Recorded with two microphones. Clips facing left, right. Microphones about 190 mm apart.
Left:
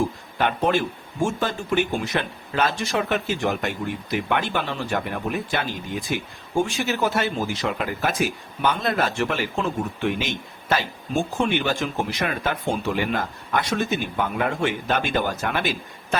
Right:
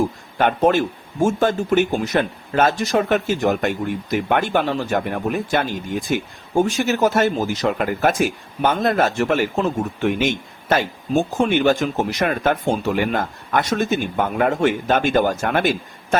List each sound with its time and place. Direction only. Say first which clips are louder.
0.3 s speech: right 5 dB; 45° right (ahead or behind)